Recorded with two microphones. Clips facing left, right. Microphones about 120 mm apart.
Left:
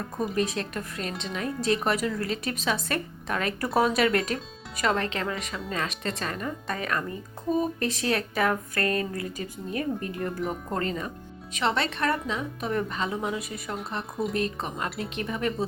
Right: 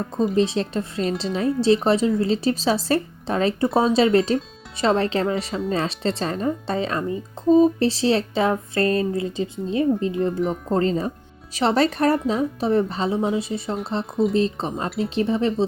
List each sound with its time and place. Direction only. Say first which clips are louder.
0.3 s speech: right 7 dB; 30° right (ahead or behind)
14.8 s speech: right 8 dB; centre (ahead or behind)
15.1 s speech: right 10 dB; 30° right (ahead or behind)